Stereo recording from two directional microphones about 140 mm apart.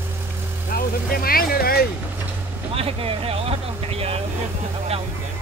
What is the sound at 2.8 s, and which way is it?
Vehicle, 45° right (ahead or behind).